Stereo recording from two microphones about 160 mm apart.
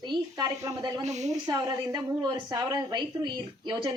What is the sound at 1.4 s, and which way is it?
A woman's voice, 25° right (ahead or behind).